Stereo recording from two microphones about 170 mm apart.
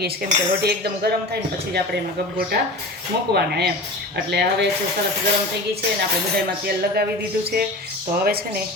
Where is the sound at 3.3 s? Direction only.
75° right (ahead or behind).